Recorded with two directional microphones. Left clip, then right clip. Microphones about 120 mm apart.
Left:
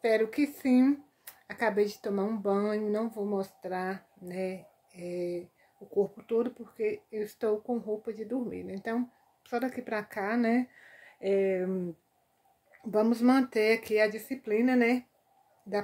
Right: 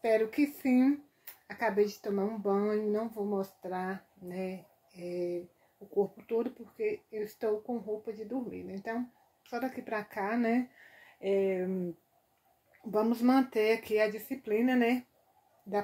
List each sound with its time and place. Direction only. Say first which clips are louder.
0.0 s speech: left 1 dB; 25° left (ahead or behind)
1.5 s speech: left 1 dB; 60° left (ahead or behind)
3.3 s speech: left 2 dB; 30° left (ahead or behind)
8.5 s speech: left 3 dB; 65° left (ahead or behind)
9.4 s a woman's voice: left 4 dB; 55° left (ahead or behind)
9.8 s speech: left 2 dB; 30° left (ahead or behind)
12.9 s speech: left 2 dB; 30° left (ahead or behind)